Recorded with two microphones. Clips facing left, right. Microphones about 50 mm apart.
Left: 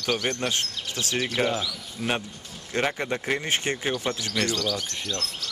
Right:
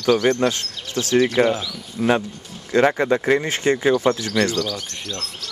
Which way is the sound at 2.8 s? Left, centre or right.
Right.